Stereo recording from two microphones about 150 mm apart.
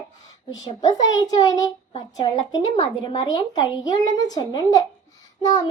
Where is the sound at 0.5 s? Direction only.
25° left (ahead or behind).